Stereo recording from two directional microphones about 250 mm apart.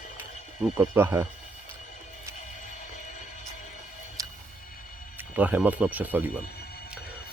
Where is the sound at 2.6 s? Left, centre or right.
Left.